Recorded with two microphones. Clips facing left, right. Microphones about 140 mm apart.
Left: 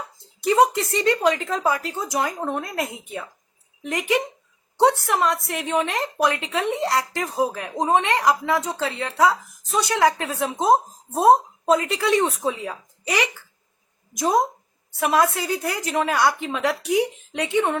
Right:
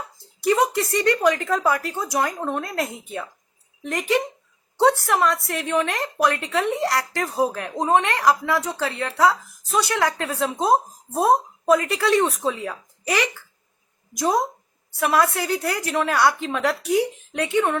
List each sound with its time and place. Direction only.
0.8 s a woman's voice: 20° left (ahead or behind)